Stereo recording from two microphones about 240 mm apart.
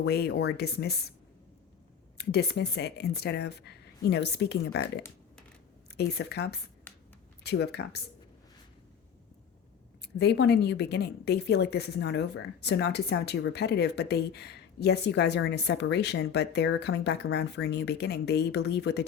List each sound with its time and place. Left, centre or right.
0.0 s speech: left
2.1 s a woman's voice: left
10.0 s a woman's voice: left